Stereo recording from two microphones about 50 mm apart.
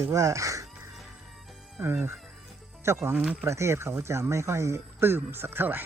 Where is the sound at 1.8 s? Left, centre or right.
Right.